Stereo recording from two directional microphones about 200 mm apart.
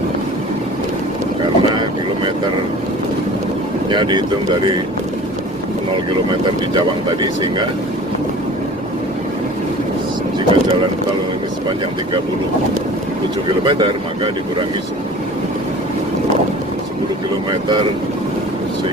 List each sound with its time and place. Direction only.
1.6 s boat: 25° right (ahead or behind)
3.9 s speech: 20° right (ahead or behind)
6.2 s speech: 25° right (ahead or behind)
10.5 s speech: 25° right (ahead or behind)
13.7 s speech: 25° right (ahead or behind)
17.5 s speech: 20° right (ahead or behind)